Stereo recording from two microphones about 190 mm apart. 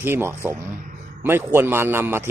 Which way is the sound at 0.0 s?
10° right (ahead or behind).